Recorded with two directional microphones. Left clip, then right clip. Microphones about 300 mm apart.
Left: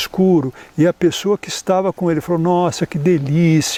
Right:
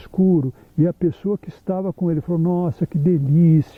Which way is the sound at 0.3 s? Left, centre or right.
Centre.